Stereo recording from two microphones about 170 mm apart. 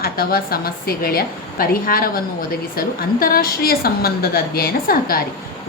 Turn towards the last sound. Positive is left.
turn(degrees=60)  # may be behind; listen again after turning